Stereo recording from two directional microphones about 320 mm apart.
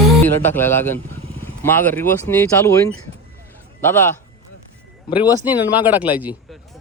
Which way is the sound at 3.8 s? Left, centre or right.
Centre.